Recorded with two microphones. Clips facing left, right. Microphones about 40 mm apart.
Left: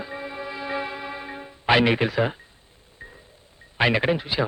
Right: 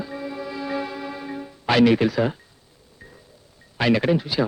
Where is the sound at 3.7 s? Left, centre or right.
Left.